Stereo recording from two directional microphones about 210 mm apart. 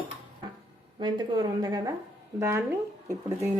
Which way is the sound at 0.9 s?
20° right (ahead or behind).